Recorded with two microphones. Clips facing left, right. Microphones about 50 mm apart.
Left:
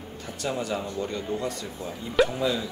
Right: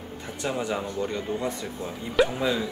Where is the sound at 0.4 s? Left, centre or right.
Right.